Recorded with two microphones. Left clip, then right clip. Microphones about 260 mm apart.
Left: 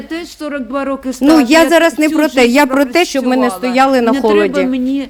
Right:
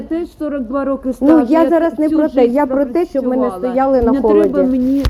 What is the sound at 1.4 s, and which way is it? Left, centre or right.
Speech, left.